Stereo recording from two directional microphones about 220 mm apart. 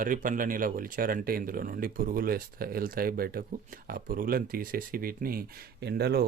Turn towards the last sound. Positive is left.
turn(degrees=-45)  # may be behind; listen again after turning